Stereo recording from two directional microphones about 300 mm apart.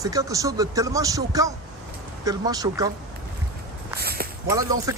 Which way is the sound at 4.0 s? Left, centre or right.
Right.